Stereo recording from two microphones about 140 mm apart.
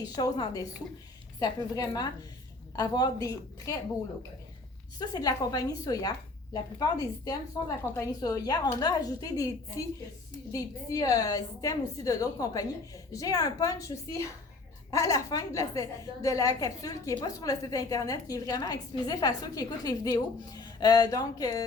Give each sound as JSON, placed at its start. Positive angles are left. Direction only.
{"t": 0.2, "sound": "a woman's voice", "side_deg": 25}
{"t": 4.9, "sound": "a woman's voice", "side_deg": 30}
{"t": 10.5, "sound": "a woman's voice", "side_deg": 25}